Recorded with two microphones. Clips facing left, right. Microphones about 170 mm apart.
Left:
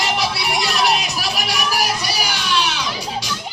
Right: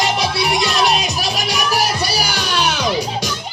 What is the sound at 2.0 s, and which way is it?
Music, 40° right (ahead or behind).